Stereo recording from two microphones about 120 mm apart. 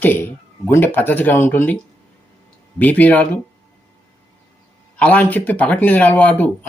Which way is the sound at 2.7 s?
15° left (ahead or behind).